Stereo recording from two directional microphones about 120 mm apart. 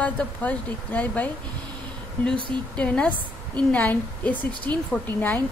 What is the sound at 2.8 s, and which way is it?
A woman's voice, 10° left (ahead or behind).